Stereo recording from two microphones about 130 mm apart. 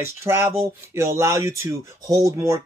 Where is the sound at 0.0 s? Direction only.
20° right (ahead or behind).